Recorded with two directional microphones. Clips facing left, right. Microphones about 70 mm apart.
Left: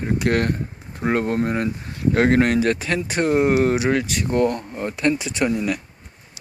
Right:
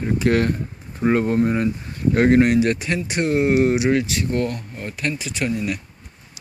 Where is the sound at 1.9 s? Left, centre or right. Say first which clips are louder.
Right 1 dB; left.